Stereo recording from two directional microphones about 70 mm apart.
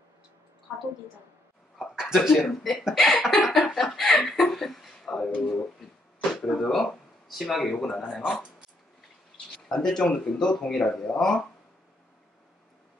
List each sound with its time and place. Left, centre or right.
1.8 s speech: centre
2.8 s a sound: centre
5.3 s speech: centre
6.4 s speech: centre
9.7 s speech: centre